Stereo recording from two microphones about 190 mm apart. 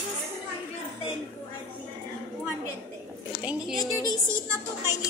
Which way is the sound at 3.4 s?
5° right (ahead or behind).